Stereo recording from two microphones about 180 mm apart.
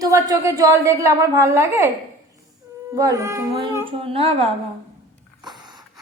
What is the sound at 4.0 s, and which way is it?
Speech, 30° right (ahead or behind).